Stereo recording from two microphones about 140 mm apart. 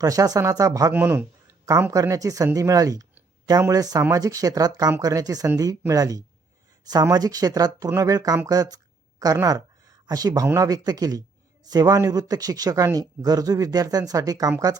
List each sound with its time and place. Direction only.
0.0 s speech: 25° right (ahead or behind)
0.9 s a man's voice: 15° right (ahead or behind)
1.9 s speech: 25° right (ahead or behind)